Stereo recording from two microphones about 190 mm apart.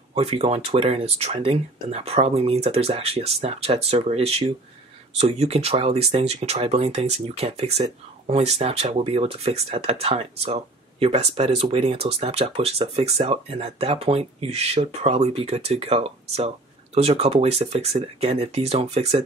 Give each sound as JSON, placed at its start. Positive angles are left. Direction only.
{"t": 0.1, "sound": "speech", "side_deg": -30}